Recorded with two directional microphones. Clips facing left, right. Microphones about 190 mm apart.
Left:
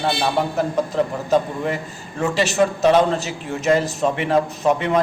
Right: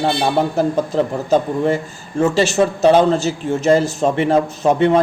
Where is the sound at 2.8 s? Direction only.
35° right (ahead or behind).